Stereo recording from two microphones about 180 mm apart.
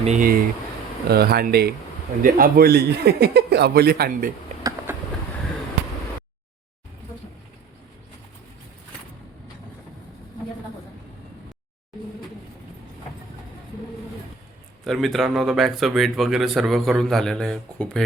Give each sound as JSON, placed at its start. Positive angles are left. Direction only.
{"t": 0.0, "sound": "speech", "side_deg": -45}
{"t": 14.8, "sound": "speech", "side_deg": 0}